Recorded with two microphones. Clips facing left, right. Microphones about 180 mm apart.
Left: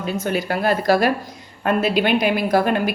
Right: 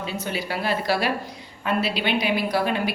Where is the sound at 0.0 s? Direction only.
50° left (ahead or behind).